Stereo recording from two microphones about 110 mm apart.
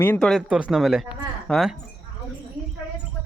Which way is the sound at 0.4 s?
10° right (ahead or behind).